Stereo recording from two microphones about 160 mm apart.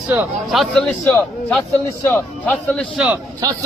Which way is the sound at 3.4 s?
20° right (ahead or behind).